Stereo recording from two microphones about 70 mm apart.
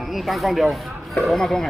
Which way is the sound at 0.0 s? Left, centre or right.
Centre.